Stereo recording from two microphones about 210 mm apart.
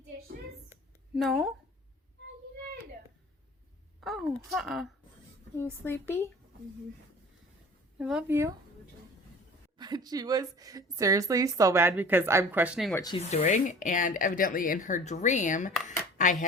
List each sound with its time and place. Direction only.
0.7 s a sound: centre (ahead or behind)
4.0 s speech: centre (ahead or behind)
5.5 s speech: 10° left (ahead or behind)
7.9 s a woman's voice: 5° right (ahead or behind)
9.7 s a woman's voice: 20° right (ahead or behind)
12.9 s speech: 15° left (ahead or behind)
13.1 s speech: 30° left (ahead or behind)